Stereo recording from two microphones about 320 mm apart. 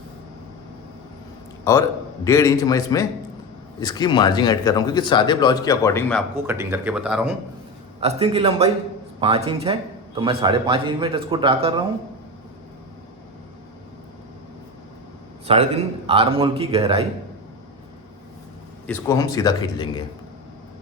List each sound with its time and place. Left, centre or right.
2.2 s speech: centre
6.3 s a man's voice: centre
8.0 s speech: centre
15.4 s speech: centre
18.9 s speech: centre